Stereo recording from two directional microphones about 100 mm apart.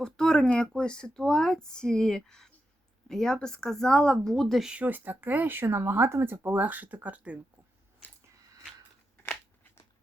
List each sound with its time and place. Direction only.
0.0 s speech: 5° left (ahead or behind)
4.7 s speech: 15° right (ahead or behind)